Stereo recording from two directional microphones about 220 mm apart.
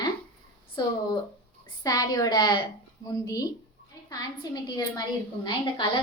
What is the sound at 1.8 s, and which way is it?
A woman's voice, 15° left (ahead or behind).